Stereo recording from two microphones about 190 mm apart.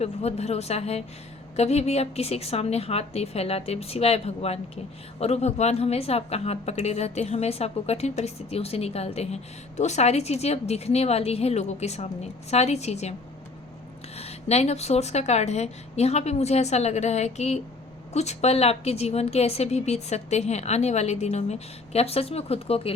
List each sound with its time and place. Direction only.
0.0 s a woman's voice: 35° left (ahead or behind)
14.2 s a woman's voice: 35° left (ahead or behind)